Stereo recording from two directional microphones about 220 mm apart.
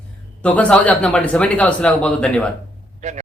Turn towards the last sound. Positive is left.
turn(degrees=-35)  # may be behind; listen again after turning